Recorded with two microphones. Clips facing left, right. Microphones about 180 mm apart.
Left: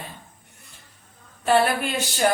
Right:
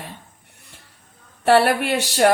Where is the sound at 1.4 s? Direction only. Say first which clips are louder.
Right 4 dB; 70° right (ahead or behind).